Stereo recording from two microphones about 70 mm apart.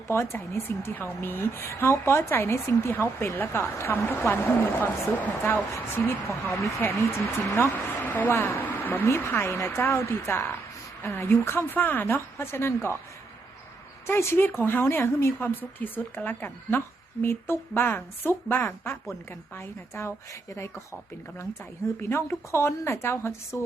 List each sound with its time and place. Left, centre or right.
0.1 s a woman's voice: left
5.5 s a woman's voice: left
14.1 s a woman's voice: left
22.1 s a woman's voice: left